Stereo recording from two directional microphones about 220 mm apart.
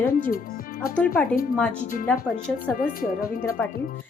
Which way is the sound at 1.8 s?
40° left (ahead or behind).